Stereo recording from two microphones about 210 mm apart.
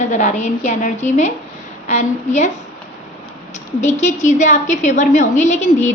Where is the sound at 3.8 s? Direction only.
35° left (ahead or behind).